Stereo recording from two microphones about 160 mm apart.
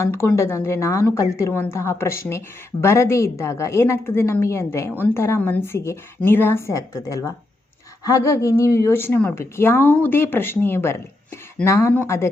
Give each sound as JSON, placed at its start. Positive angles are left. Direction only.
{"t": 0.0, "sound": "a woman's voice", "side_deg": 15}